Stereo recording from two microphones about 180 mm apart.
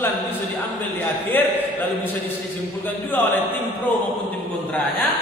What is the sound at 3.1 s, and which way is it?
Speech, 10° left (ahead or behind).